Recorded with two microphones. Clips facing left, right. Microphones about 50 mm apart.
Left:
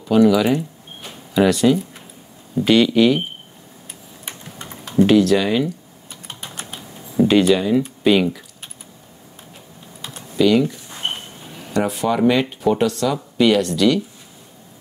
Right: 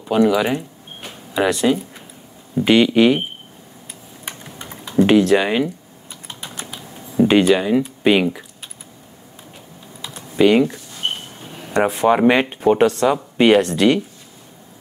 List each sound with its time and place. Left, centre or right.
0.1 s a sound: centre
2.5 s speech: right
4.3 s typing: centre
4.9 s speech: right
6.2 s typing: left
7.2 s speech: right
10.1 s typing: right
10.9 s a sound: left
11.7 s speech: right